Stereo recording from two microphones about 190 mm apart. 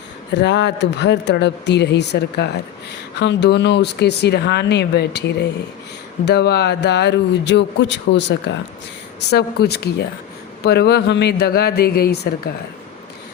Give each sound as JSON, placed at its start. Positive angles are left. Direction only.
{"t": 0.3, "sound": "speech", "side_deg": 65}